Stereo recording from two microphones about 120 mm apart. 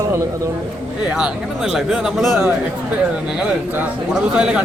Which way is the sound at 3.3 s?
5° right (ahead or behind).